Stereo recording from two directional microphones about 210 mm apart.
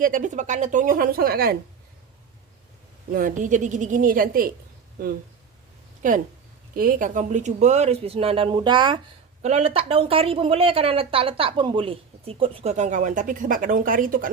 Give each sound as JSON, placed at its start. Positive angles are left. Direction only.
{"t": 0.0, "sound": "a woman's voice", "side_deg": -40}
{"t": 3.1, "sound": "a woman's voice", "side_deg": -40}
{"t": 6.0, "sound": "speech", "side_deg": -40}